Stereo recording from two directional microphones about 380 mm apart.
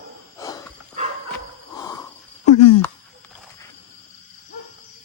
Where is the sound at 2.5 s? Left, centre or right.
Centre.